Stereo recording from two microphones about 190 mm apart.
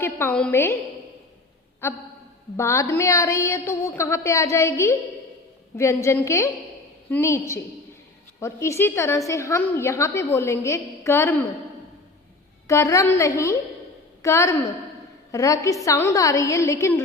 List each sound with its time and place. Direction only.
0.0 s a woman's voice: 10° left (ahead or behind)
1.8 s a woman's voice: 10° left (ahead or behind)
12.6 s a woman's voice: 15° left (ahead or behind)